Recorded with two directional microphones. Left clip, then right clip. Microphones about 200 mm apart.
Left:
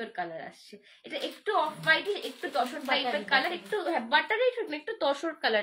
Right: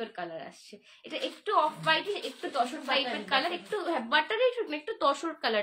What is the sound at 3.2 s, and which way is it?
A woman's voice, 15° right (ahead or behind).